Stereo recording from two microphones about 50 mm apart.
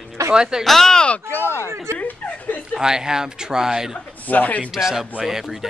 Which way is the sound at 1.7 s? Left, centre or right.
Right.